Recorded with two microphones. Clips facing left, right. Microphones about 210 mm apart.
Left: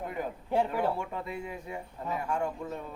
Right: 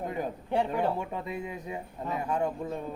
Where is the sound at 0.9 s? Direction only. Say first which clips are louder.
Right 2 dB; 20° right (ahead or behind).